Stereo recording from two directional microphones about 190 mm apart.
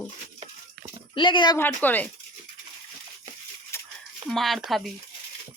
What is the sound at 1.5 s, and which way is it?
Speech, 10° left (ahead or behind).